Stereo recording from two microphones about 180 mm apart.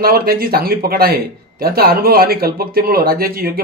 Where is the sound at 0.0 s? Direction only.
55° right (ahead or behind).